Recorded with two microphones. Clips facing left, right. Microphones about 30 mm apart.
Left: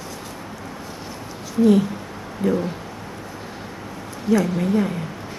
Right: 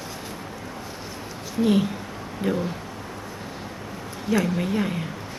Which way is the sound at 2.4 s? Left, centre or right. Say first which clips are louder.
Left 4 dB; right.